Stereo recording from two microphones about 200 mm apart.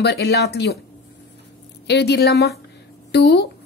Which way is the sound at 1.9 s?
55° left (ahead or behind).